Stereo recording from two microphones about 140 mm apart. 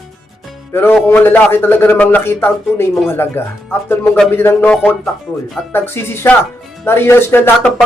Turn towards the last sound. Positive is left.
turn(degrees=15)  # may be behind; listen again after turning